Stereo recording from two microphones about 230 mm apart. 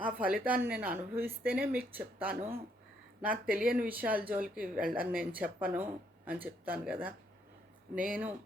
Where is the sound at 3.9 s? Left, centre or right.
Centre.